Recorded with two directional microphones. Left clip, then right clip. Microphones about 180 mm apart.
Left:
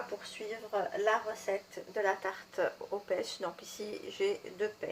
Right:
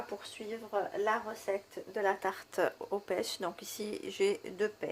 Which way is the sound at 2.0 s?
55° right (ahead or behind).